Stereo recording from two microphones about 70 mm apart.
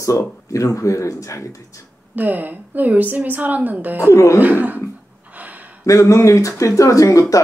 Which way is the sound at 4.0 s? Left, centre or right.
Left.